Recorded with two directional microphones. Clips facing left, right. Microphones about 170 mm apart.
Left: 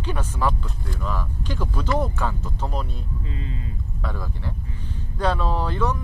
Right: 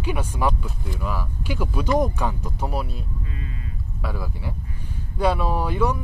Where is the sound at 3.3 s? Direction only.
25° left (ahead or behind).